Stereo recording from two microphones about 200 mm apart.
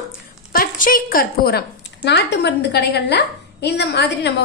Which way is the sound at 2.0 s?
60° left (ahead or behind).